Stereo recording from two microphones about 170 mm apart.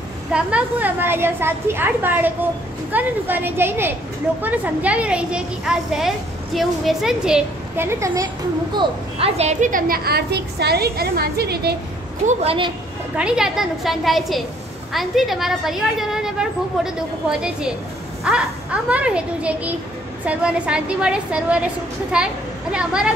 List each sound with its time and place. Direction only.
0.3 s a woman's voice: 5° right (ahead or behind)
8.7 s a woman's voice: 35° right (ahead or behind); by 11.7 s 70° right (ahead or behind)
12.3 s a woman's voice: 35° right (ahead or behind)
13.1 s a woman's voice: 5° right (ahead or behind)